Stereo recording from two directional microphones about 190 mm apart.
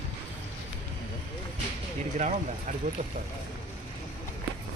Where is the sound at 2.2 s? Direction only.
40° right (ahead or behind).